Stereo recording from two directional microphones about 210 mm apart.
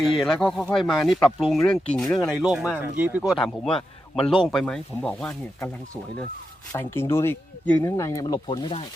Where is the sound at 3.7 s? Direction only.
25° left (ahead or behind).